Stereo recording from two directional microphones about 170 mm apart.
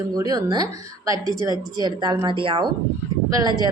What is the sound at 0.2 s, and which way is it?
A woman's voice, 20° right (ahead or behind).